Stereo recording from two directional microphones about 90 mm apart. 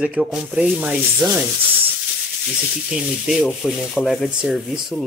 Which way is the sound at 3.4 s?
Centre (ahead or behind).